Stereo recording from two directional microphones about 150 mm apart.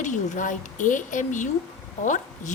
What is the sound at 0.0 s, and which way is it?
A woman's voice, 55° left (ahead or behind).